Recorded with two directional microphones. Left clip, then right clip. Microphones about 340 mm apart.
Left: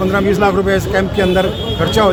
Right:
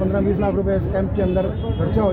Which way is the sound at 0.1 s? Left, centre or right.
Left.